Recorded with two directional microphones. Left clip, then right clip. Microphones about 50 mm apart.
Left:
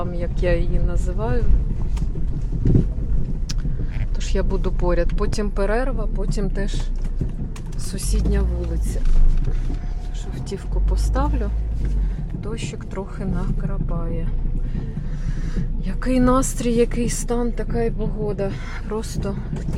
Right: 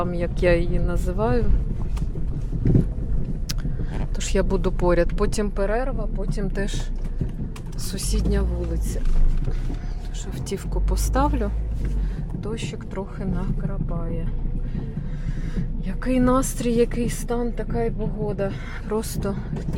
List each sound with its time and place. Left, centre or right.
0.0 s speech: right
3.5 s vehicle: right
5.1 s speech: right
5.6 s a woman's voice: left
6.1 s speech: left
8.2 s a woman's voice: right
8.6 s speech: centre
10.5 s speech: right
12.5 s speech: right
12.7 s speech: centre
15.5 s speech: centre
17.2 s a woman's voice: left
18.0 s a woman's voice: left
18.9 s speech: right